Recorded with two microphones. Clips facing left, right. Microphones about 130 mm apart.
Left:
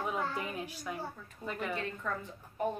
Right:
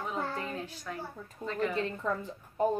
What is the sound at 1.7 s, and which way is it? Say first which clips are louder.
Speech: right 4 dB; 35° right (ahead or behind).